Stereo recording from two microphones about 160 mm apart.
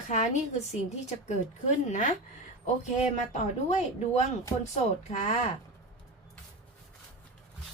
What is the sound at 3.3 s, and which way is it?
A woman's voice, 45° left (ahead or behind).